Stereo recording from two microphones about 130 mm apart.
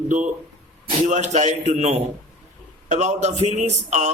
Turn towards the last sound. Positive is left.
turn(degrees=-60)  # may be behind; listen again after turning